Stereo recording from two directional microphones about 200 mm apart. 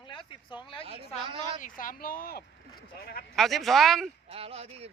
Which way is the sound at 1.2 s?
25° right (ahead or behind).